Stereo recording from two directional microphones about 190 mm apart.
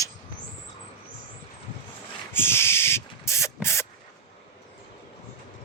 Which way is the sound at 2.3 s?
10° left (ahead or behind).